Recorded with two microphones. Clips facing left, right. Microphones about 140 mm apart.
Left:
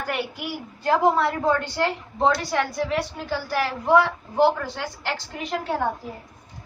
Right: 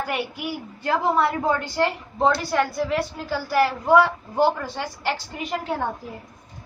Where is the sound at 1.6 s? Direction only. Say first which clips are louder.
Right 2 dB; 10° right (ahead or behind).